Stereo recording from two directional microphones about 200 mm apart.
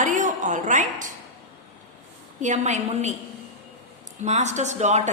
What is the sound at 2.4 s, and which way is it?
Speech, 35° right (ahead or behind).